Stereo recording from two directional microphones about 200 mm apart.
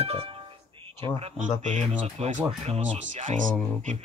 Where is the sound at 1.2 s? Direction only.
35° right (ahead or behind).